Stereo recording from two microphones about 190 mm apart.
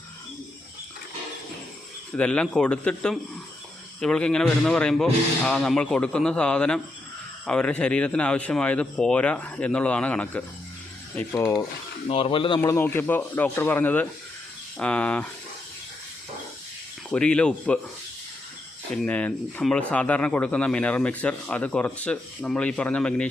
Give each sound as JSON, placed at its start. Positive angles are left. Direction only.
{"t": 2.1, "sound": "a man's voice", "side_deg": 5}
{"t": 12.0, "sound": "speech", "side_deg": 30}
{"t": 12.5, "sound": "a man's voice", "side_deg": 10}
{"t": 17.1, "sound": "speech", "side_deg": 5}
{"t": 19.0, "sound": "a man's voice", "side_deg": 5}